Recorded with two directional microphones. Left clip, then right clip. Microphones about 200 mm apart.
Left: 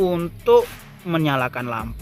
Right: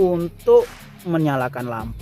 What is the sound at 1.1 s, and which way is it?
Speech, 45° right (ahead or behind).